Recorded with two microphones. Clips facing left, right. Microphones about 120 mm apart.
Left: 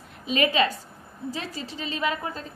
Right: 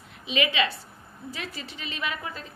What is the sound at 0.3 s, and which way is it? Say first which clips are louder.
A woman's voice: left 3 dB; 40° left (ahead or behind).